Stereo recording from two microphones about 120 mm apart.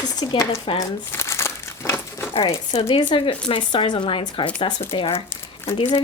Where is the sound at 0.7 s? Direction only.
45° left (ahead or behind).